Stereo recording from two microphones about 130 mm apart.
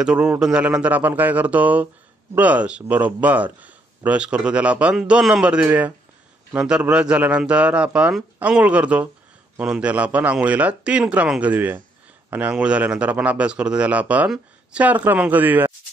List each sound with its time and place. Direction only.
0.0 s speech: 5° right (ahead or behind)